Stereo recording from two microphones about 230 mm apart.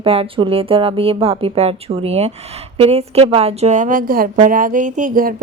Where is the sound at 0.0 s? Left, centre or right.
Right.